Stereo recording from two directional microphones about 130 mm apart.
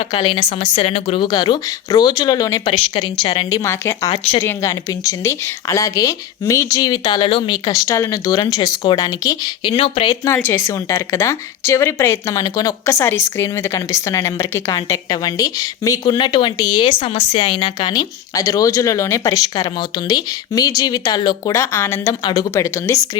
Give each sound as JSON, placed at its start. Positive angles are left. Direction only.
{"t": 0.1, "sound": "speech", "side_deg": 40}
{"t": 0.8, "sound": "speech", "side_deg": 50}
{"t": 1.2, "sound": "speech", "side_deg": 30}
{"t": 2.7, "sound": "speech", "side_deg": 45}
{"t": 3.6, "sound": "speech", "side_deg": 20}
{"t": 9.7, "sound": "speech", "side_deg": 45}
{"t": 10.2, "sound": "speech", "side_deg": 20}